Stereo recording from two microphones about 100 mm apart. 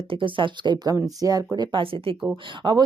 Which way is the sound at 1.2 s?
40° right (ahead or behind).